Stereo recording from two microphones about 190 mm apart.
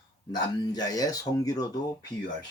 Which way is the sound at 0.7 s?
20° left (ahead or behind).